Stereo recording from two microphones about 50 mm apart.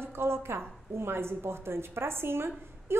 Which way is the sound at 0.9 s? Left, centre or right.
Right.